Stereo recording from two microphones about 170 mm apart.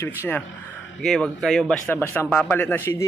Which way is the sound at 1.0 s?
Centre (ahead or behind).